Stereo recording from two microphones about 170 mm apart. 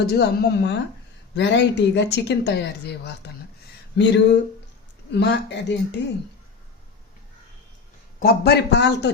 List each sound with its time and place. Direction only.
0.1 s a woman's voice: 75° left (ahead or behind)
3.9 s speech: 90° left
8.2 s a woman's voice: 70° left (ahead or behind); by 9.0 s 85° left